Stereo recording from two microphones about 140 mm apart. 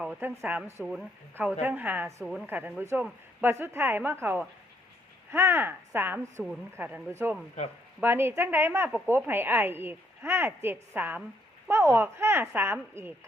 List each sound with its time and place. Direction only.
0.2 s a woman's voice: 15° right (ahead or behind)
2.2 s a woman's voice: centre (ahead or behind)
2.5 s a woman's voice: 15° right (ahead or behind)